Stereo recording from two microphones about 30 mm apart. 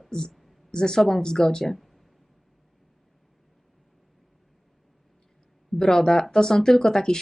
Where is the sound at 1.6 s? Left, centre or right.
Centre.